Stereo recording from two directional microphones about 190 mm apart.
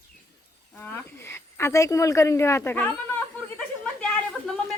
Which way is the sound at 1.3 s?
15° left (ahead or behind).